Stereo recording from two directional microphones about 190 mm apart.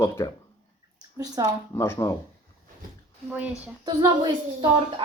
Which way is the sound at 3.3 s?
5° right (ahead or behind).